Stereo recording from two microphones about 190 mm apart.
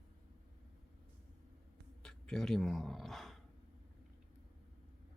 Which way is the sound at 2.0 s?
5° left (ahead or behind).